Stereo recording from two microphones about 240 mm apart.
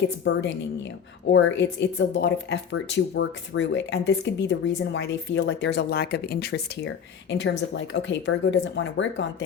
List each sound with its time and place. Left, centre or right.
0.3 s speech: left